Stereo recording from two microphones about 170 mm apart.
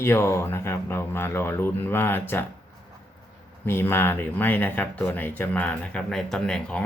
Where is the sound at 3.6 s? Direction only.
15° left (ahead or behind).